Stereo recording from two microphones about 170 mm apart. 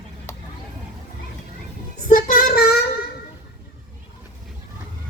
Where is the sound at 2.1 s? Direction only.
55° left (ahead or behind).